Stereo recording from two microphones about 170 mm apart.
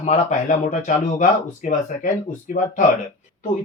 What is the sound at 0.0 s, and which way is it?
Speech, 45° left (ahead or behind).